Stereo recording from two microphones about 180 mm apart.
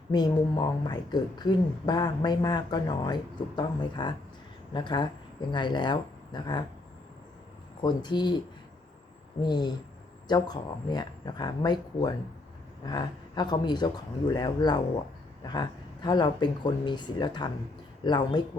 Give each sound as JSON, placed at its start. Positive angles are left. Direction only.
{"t": 0.1, "sound": "a woman's voice", "side_deg": 25}
{"t": 7.8, "sound": "a woman's voice", "side_deg": 25}
{"t": 9.4, "sound": "a woman's voice", "side_deg": 25}